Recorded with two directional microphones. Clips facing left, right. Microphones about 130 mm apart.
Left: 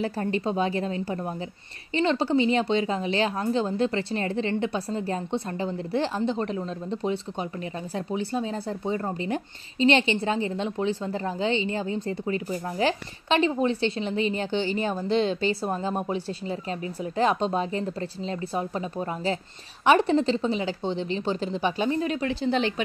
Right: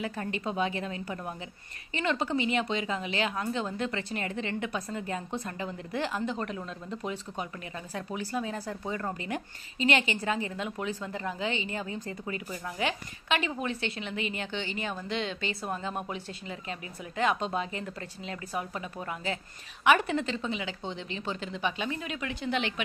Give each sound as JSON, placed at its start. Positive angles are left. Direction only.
{"t": 0.0, "sound": "speech", "side_deg": 35}